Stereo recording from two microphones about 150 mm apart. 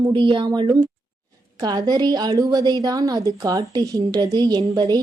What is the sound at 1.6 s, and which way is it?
A woman's voice, 25° right (ahead or behind).